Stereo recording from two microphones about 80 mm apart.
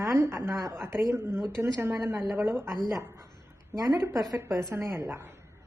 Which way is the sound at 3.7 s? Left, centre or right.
Right.